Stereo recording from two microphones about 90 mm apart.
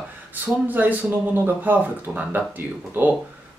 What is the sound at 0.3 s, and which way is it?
Speech, 20° right (ahead or behind).